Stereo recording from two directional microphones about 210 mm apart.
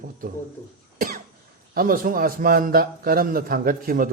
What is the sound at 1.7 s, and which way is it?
A man's voice, 45° right (ahead or behind).